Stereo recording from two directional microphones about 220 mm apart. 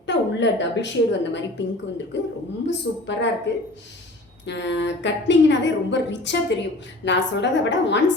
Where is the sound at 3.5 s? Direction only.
50° left (ahead or behind).